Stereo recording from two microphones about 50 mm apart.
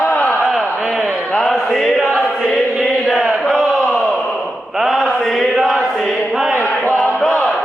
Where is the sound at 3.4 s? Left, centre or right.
Centre.